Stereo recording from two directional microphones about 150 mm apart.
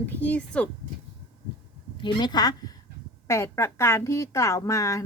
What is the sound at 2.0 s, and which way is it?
A woman's voice, 30° left (ahead or behind).